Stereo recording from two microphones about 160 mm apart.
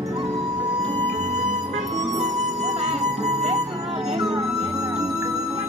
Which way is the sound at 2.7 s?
45° right (ahead or behind).